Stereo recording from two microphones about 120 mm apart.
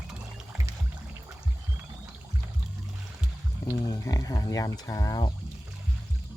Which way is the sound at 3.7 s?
30° left (ahead or behind).